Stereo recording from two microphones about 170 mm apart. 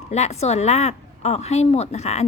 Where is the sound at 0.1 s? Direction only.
40° left (ahead or behind).